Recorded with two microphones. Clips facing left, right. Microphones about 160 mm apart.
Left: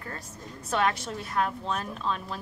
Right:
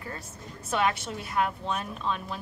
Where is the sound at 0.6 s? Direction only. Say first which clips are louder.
Even; 5° right (ahead or behind).